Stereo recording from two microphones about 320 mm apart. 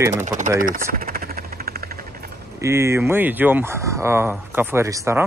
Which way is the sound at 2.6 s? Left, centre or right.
Centre.